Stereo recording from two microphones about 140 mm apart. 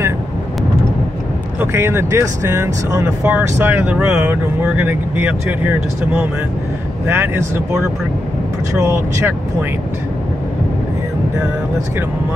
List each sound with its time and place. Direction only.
1.6 s speech: 15° right (ahead or behind)
7.1 s speech: 20° right (ahead or behind)